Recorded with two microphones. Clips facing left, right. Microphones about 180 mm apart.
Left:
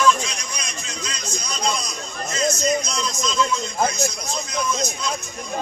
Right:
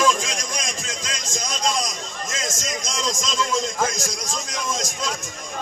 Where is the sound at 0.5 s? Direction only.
90° right.